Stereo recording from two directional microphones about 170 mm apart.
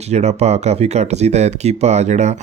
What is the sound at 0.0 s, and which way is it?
A man's voice, 40° right (ahead or behind).